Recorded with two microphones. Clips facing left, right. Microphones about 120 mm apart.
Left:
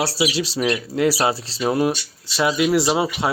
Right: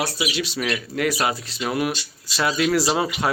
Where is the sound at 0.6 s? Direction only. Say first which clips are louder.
Left 6 dB; 20° left (ahead or behind).